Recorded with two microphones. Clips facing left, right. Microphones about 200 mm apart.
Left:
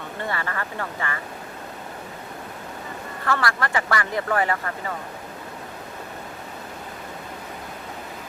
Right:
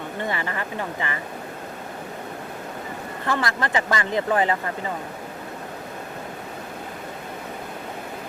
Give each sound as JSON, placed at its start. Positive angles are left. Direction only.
{"t": 0.3, "sound": "speech", "side_deg": -20}
{"t": 3.2, "sound": "speech", "side_deg": -20}